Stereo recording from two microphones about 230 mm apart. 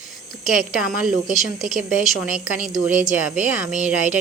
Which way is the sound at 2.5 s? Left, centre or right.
Centre.